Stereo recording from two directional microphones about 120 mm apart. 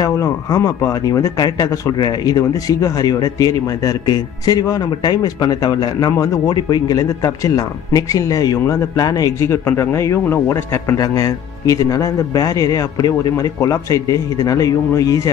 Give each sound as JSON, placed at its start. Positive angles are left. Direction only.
{"t": 0.0, "sound": "speech", "side_deg": 30}